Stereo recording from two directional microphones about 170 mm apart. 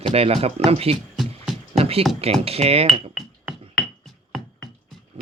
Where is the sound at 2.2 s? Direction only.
35° right (ahead or behind).